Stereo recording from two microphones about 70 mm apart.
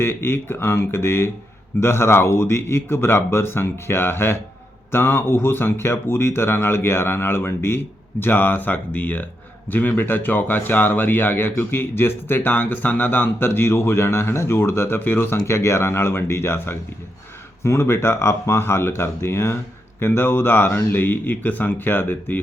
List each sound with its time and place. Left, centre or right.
0.0 s speech: left